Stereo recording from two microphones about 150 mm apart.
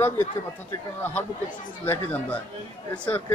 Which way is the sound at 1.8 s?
15° left (ahead or behind).